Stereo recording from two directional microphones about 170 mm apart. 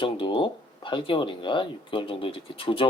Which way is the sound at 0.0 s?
30° left (ahead or behind).